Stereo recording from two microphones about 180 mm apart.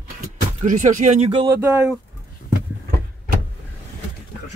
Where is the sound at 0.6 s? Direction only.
45° right (ahead or behind).